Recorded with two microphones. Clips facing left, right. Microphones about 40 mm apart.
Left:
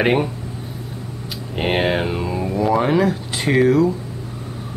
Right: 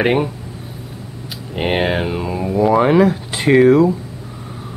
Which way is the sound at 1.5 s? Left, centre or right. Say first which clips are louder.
Right 1 dB; centre.